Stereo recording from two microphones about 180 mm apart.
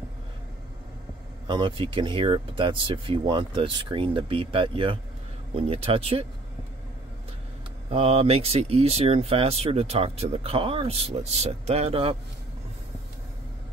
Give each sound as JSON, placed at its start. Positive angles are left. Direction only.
{"t": 1.5, "sound": "speech", "side_deg": -25}
{"t": 7.9, "sound": "speech", "side_deg": -35}